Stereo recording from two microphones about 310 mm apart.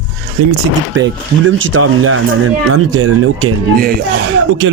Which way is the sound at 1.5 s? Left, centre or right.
Right.